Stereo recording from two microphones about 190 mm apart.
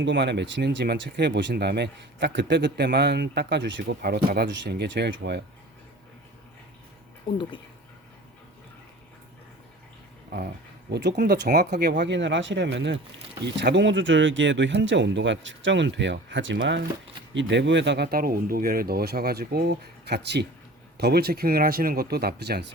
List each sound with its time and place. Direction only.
0.0 s speech: 65° right (ahead or behind)
10.9 s speech: 60° right (ahead or behind)